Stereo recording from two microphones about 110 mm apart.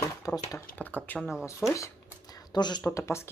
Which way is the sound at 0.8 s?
15° left (ahead or behind).